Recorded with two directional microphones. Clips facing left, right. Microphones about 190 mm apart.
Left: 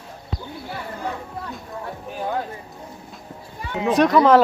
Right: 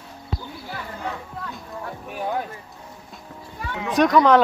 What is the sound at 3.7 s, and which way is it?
Speech, 25° left (ahead or behind).